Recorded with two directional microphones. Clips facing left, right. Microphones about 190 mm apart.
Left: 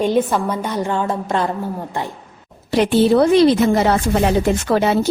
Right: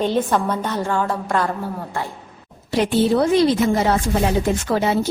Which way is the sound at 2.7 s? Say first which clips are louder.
Left 4 dB; 70° left (ahead or behind).